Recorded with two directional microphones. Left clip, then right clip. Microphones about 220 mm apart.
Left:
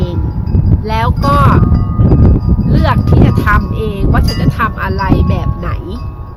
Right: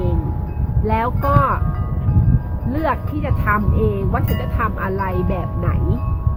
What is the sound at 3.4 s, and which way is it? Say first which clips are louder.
Speech: left 5 dB; 10° left (ahead or behind).